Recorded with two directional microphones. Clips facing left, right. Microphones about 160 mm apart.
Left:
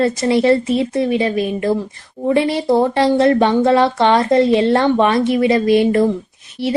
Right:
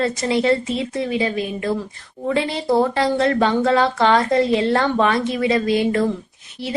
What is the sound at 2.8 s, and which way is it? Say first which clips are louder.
Speech: left 5 dB; 25° left (ahead or behind).